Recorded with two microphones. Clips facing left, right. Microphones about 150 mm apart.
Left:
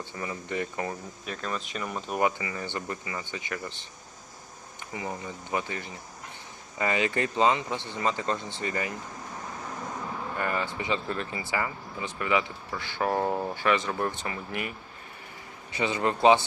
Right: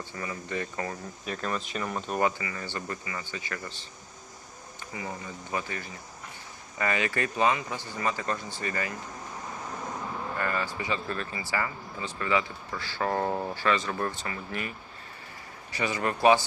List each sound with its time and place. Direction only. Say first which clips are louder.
0.1 s speech: even; 20° left (ahead or behind)
1.2 s speech: right 3 dB; centre (ahead or behind)
2.2 s speech: left 3 dB; 20° left (ahead or behind)
4.9 s speech: left 2 dB; 25° left (ahead or behind)
10.3 s speech: left 1 dB; 20° left (ahead or behind)
13.1 s speech: left 1 dB; 10° left (ahead or behind)
15.7 s speech: left 2 dB; 20° left (ahead or behind)